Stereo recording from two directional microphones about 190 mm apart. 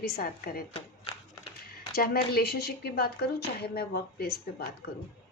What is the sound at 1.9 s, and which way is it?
A woman's voice, 55° left (ahead or behind).